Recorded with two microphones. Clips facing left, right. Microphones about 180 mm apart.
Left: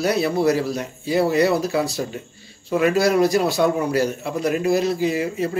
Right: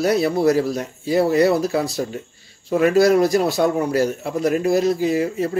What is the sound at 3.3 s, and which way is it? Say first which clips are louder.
Speech: right 1 dB; 25° right (ahead or behind).